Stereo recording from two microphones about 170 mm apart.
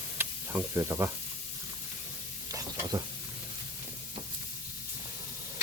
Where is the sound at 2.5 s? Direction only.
20° right (ahead or behind).